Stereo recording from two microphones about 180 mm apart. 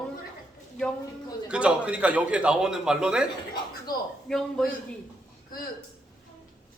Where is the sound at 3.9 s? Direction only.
55° left (ahead or behind).